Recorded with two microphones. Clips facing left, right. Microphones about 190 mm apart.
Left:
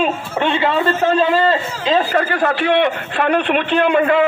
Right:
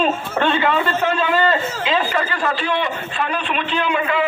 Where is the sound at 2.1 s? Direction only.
55° left (ahead or behind).